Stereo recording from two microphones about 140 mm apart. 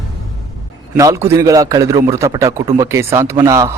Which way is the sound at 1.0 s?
20° right (ahead or behind).